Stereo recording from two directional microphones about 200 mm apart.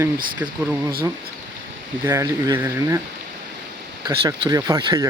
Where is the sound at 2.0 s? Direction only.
15° right (ahead or behind).